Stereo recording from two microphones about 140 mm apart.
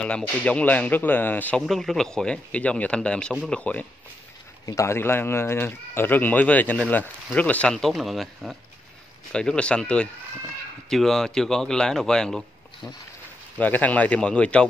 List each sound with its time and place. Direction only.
0.0 s speech: 10° left (ahead or behind)
1.7 s speech: centre (ahead or behind)
4.6 s speech: 20° left (ahead or behind)